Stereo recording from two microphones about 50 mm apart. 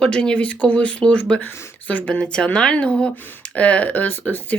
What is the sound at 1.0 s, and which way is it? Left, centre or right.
Speech, centre.